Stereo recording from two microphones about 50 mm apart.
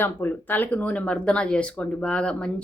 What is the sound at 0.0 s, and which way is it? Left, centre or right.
Speech, left.